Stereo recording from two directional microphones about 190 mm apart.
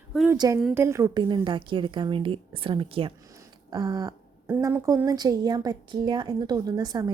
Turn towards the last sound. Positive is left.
turn(degrees=-20)  # may be behind; listen again after turning